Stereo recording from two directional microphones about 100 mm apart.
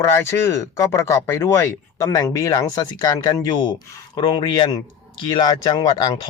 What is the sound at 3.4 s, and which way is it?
Speech, 50° left (ahead or behind).